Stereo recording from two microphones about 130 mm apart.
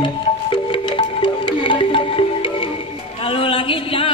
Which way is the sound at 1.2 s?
40° left (ahead or behind).